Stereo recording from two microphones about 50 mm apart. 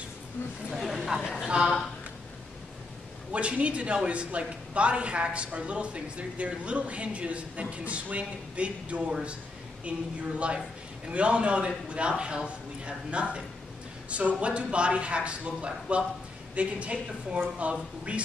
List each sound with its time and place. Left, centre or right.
0.7 s a sound: centre
1.5 s speech: centre
3.3 s a woman's voice: right
11.1 s a woman's voice: right